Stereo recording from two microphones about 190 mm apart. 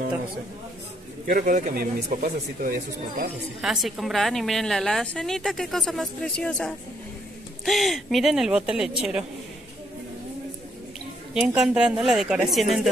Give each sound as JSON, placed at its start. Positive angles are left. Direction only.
{"t": 1.2, "sound": "speech", "side_deg": -45}
{"t": 3.6, "sound": "a woman's voice", "side_deg": 0}
{"t": 11.3, "sound": "a woman's voice", "side_deg": -5}